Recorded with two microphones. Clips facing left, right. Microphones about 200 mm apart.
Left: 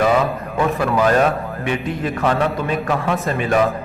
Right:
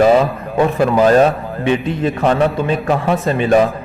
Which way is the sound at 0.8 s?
30° right (ahead or behind).